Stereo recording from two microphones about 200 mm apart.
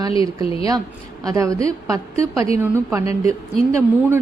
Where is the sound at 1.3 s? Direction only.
15° right (ahead or behind).